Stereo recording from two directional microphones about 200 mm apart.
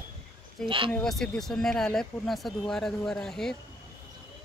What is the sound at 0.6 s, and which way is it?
Speech, 25° right (ahead or behind).